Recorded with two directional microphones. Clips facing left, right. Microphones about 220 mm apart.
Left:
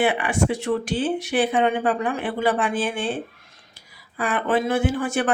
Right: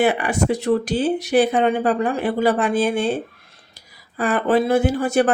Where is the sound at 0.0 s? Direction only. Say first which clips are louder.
Right 2 dB; 40° right (ahead or behind).